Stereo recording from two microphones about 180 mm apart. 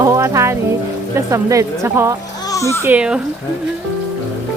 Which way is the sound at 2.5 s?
15° left (ahead or behind).